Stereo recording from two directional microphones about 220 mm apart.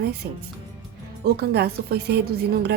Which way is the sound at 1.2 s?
45° right (ahead or behind).